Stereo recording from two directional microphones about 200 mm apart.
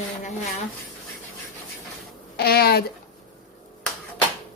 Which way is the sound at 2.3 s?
50° left (ahead or behind).